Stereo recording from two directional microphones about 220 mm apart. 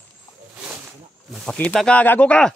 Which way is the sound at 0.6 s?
5° right (ahead or behind).